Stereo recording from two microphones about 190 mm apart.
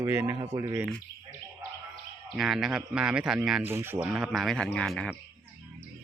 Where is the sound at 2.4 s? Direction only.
Centre (ahead or behind).